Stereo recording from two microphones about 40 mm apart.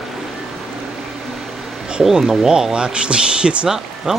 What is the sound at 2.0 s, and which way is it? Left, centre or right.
Speech, centre.